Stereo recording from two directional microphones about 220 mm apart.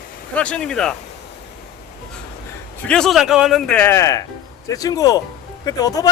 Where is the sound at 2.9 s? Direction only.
Centre (ahead or behind).